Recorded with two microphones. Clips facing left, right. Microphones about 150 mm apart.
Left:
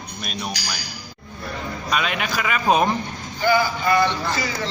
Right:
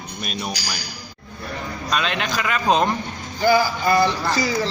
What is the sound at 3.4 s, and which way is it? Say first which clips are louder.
A man's voice: right 2 dB; 40° right (ahead or behind).